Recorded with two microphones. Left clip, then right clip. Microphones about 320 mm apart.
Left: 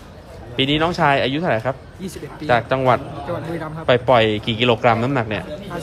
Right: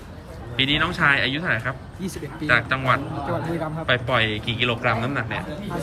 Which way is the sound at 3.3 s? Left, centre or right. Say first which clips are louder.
Left 1 dB; centre.